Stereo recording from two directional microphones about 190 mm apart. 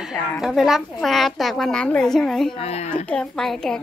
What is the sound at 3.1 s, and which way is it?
Speech, 5° left (ahead or behind).